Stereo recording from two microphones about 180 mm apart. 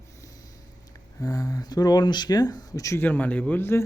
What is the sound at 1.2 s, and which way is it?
Speech, 20° left (ahead or behind).